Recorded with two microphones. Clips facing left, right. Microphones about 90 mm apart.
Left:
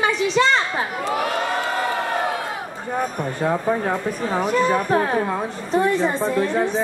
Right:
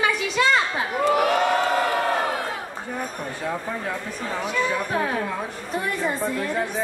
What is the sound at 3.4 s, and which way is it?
Speech, 50° left (ahead or behind).